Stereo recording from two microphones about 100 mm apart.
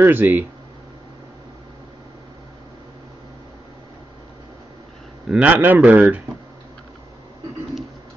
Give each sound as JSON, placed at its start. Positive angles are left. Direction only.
{"t": 0.0, "sound": "speech", "side_deg": -20}
{"t": 5.3, "sound": "speech", "side_deg": -15}